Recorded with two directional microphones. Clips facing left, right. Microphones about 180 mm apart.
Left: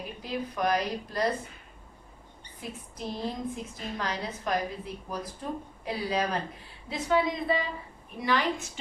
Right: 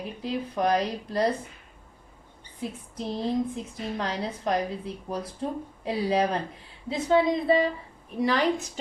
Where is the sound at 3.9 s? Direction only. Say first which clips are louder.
Right 2 dB; 25° right (ahead or behind).